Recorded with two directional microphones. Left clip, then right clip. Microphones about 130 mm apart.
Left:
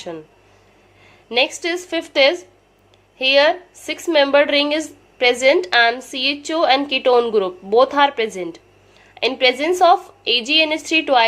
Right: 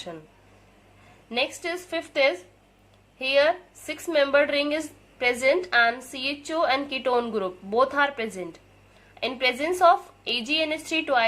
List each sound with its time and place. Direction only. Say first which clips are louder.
1.3 s a woman's voice: left 9 dB; 20° left (ahead or behind)